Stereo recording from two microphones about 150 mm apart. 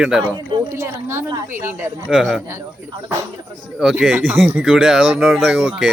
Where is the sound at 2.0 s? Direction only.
Centre (ahead or behind).